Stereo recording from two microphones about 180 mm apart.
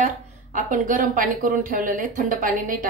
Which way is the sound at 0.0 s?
45° right (ahead or behind).